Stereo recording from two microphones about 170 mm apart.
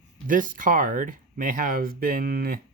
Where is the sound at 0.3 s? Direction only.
50° right (ahead or behind).